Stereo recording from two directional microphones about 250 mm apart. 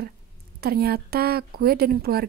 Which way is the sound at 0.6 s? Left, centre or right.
Right.